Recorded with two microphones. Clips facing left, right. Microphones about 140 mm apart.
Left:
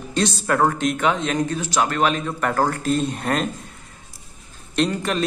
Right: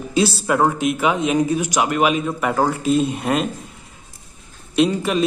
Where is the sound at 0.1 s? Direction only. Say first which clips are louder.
Right 3 dB; 5° right (ahead or behind).